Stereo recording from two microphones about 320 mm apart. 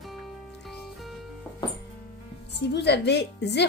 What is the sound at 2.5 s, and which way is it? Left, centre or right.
Speech, left.